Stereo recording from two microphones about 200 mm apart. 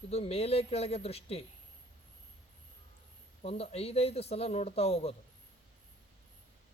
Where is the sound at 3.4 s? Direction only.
30° left (ahead or behind).